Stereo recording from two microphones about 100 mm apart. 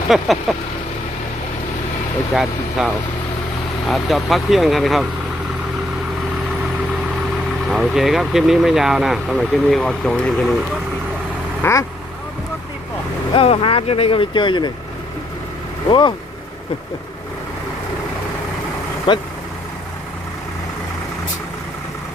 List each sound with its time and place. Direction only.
0.1 s speech: centre (ahead or behind)
2.3 s speech: centre (ahead or behind)
7.7 s speech: centre (ahead or behind)
11.6 s speech: 30° left (ahead or behind)
13.3 s speech: 70° left (ahead or behind); by 14.7 s 50° left (ahead or behind)
15.9 s speech: 55° left (ahead or behind)
19.1 s speech: 55° left (ahead or behind)